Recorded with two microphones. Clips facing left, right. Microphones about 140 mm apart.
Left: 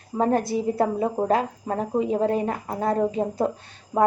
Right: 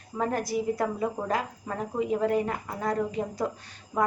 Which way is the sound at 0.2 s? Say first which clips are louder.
Left 6 dB; 30° left (ahead or behind).